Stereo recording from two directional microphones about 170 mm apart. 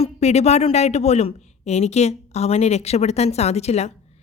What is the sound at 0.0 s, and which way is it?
A woman's voice, 40° left (ahead or behind).